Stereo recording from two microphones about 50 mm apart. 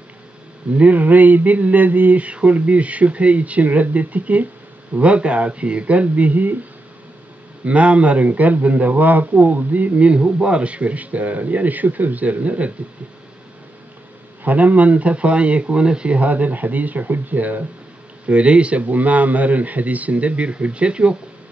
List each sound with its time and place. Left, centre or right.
0.7 s a man's voice: right
7.6 s speech: right
14.4 s speech: right
18.2 s a man's voice: right